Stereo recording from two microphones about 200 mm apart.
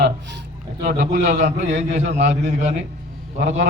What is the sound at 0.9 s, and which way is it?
A man's voice, 40° right (ahead or behind).